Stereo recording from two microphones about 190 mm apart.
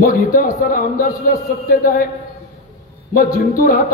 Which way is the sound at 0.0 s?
45° left (ahead or behind).